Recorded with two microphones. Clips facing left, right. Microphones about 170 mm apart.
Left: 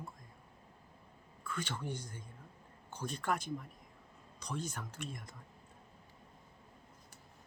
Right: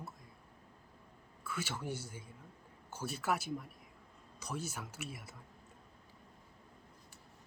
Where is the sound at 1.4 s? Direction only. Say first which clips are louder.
Even; 5° right (ahead or behind).